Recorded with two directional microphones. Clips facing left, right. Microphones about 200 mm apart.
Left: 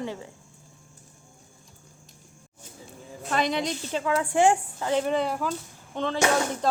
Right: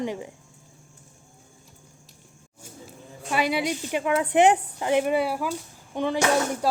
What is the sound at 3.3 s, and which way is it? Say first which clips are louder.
Speech: right 1 dB; 10° right (ahead or behind).